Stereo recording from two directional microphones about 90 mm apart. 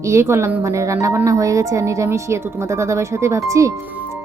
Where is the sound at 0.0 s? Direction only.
30° right (ahead or behind).